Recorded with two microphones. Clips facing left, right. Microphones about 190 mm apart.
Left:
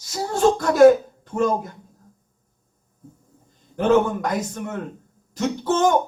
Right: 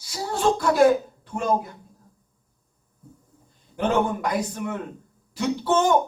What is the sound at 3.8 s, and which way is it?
A man's voice, 45° left (ahead or behind).